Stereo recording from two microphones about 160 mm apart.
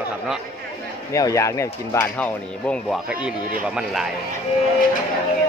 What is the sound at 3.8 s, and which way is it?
Music, 5° right (ahead or behind).